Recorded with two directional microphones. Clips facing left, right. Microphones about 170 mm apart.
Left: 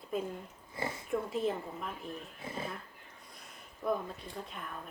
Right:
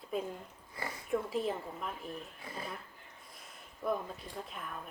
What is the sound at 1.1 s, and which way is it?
Speech, centre (ahead or behind).